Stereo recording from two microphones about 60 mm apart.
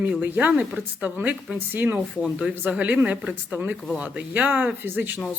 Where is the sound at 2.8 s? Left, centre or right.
Right.